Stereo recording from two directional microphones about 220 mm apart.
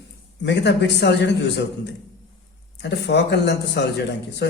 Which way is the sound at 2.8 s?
50° left (ahead or behind).